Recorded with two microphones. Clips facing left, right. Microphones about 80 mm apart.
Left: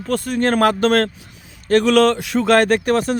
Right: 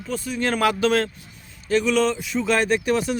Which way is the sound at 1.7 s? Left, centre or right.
Left.